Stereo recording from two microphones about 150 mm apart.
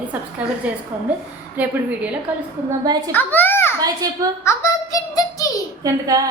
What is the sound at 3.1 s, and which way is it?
Speech, 10° left (ahead or behind).